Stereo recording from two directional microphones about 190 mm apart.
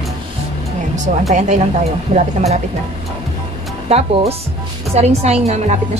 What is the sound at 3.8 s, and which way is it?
Speech, 35° right (ahead or behind).